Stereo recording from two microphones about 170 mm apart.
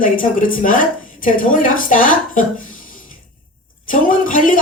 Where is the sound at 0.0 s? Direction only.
55° left (ahead or behind).